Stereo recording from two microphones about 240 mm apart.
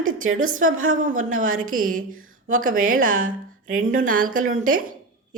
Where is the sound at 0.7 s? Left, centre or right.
Right.